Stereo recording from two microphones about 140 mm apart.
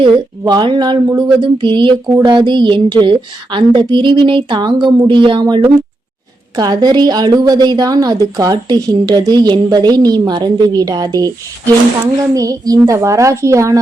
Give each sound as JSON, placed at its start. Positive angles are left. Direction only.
{"t": 0.0, "sound": "a woman's voice", "side_deg": -30}